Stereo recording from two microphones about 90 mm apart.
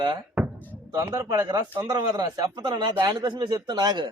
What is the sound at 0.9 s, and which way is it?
Speech, 40° right (ahead or behind).